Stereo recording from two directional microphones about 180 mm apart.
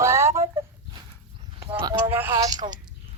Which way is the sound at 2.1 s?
10° right (ahead or behind).